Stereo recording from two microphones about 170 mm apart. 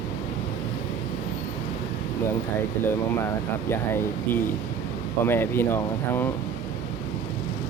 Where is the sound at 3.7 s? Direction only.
15° left (ahead or behind).